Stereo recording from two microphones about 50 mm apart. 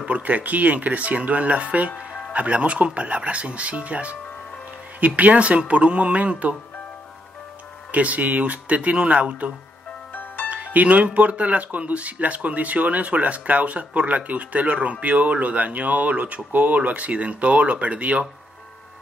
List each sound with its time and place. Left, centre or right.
0.0 s speech: right
7.9 s speech: right
10.1 s music: left
10.5 s speech: right